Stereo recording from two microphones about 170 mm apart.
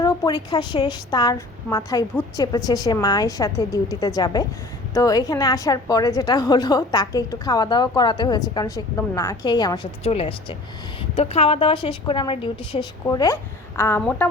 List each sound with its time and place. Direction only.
0.0 s a woman's voice: 20° left (ahead or behind)
13.1 s speech: 20° left (ahead or behind)